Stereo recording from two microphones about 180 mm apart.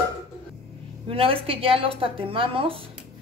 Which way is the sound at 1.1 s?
30° right (ahead or behind).